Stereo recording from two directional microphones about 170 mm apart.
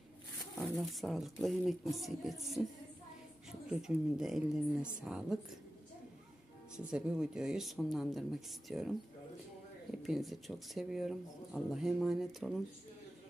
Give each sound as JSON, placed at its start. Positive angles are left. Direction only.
{"t": 0.6, "sound": "speech", "side_deg": 0}
{"t": 3.7, "sound": "speech", "side_deg": -5}
{"t": 6.9, "sound": "speech", "side_deg": -5}